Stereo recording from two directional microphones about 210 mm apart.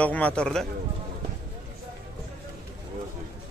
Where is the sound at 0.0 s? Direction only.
5° left (ahead or behind).